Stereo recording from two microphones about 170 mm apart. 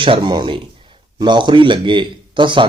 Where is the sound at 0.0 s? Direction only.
30° right (ahead or behind).